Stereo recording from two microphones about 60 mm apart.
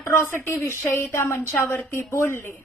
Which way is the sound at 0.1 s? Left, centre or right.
Left.